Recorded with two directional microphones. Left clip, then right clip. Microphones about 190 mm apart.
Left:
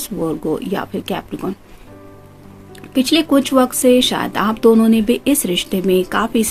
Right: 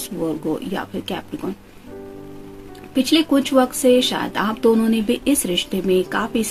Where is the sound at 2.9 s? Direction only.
40° left (ahead or behind).